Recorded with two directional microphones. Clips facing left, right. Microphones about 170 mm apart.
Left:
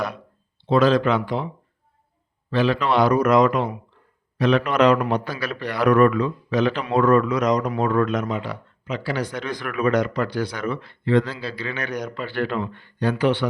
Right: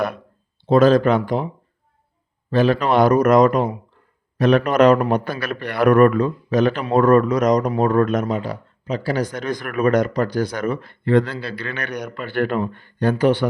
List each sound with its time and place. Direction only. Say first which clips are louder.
0.6 s speech: right 4 dB; 45° right (ahead or behind)
2.5 s speech: right 3 dB; 45° right (ahead or behind)